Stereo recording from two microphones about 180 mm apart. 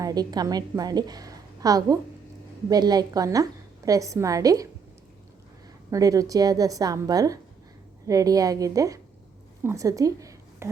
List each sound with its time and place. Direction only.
0.0 s a woman's voice: 20° right (ahead or behind)
5.9 s a woman's voice: 20° right (ahead or behind)